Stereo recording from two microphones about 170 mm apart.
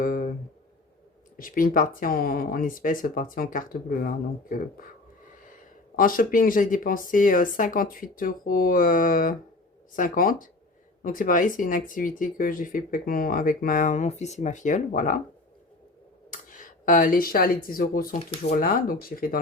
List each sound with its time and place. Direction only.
0.0 s a sound: 55° left (ahead or behind)
1.4 s speech: 55° left (ahead or behind)
6.0 s speech: 55° left (ahead or behind)
16.5 s speech: 50° left (ahead or behind)